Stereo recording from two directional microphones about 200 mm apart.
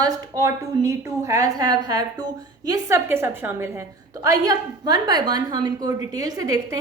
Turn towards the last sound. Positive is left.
turn(degrees=-15)  # may be behind; listen again after turning